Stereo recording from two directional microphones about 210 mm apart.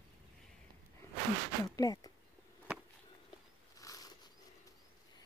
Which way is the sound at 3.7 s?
15° left (ahead or behind).